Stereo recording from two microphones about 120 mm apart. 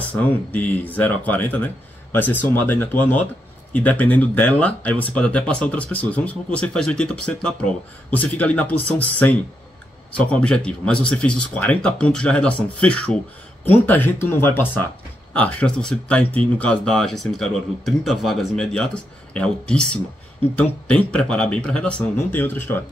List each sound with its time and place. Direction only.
0.2 s speech: 15° left (ahead or behind)